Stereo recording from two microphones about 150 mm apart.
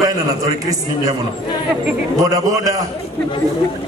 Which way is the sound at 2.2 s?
20° right (ahead or behind).